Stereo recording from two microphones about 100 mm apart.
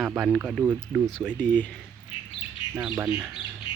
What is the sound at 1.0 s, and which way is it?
Speech, 5° left (ahead or behind).